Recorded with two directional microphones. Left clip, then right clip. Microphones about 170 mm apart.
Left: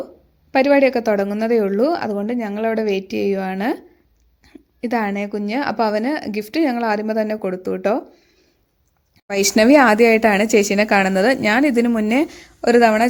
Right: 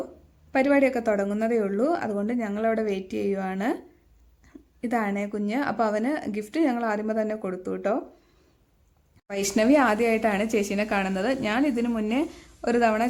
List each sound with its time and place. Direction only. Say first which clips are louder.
0.5 s a woman's voice: left 7 dB; 15° left (ahead or behind)
9.2 s a woman's voice: left 9 dB; 30° left (ahead or behind)